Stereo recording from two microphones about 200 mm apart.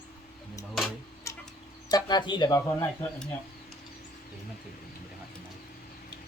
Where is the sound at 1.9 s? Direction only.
20° left (ahead or behind).